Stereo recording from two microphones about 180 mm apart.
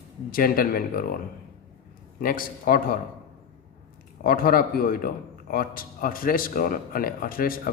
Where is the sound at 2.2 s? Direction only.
50° left (ahead or behind).